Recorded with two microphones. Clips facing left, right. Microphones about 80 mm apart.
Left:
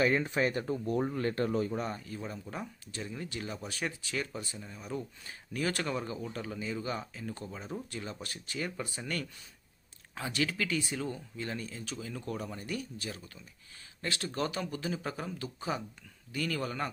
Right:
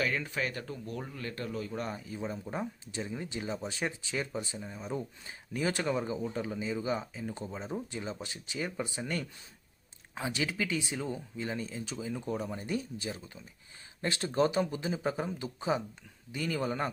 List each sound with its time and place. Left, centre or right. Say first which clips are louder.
0.0 s speech: left 5 dB; left
1.7 s speech: left 1 dB; centre
2.0 s speech: right 3 dB; centre